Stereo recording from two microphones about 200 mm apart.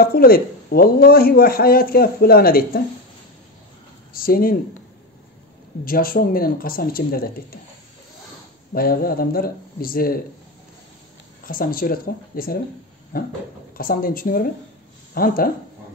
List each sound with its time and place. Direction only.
0.0 s speech: 50° left (ahead or behind)
4.1 s speech: 45° left (ahead or behind)
5.9 s speech: 45° left (ahead or behind)
8.7 s speech: 50° left (ahead or behind)
11.4 s speech: 45° left (ahead or behind)